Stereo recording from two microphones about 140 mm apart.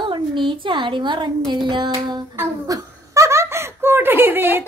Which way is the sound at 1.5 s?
35° right (ahead or behind).